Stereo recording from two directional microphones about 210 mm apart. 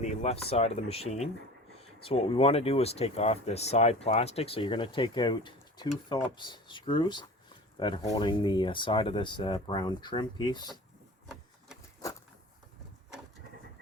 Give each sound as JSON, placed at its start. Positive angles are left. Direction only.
{"t": 0.0, "sound": "speech", "side_deg": 35}